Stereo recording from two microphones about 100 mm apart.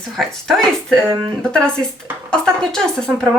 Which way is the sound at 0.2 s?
Centre (ahead or behind).